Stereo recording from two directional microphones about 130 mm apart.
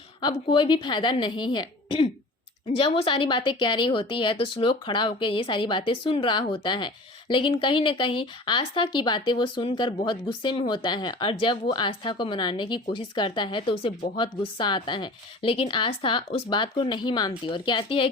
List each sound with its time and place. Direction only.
0.4 s speech: 40° left (ahead or behind)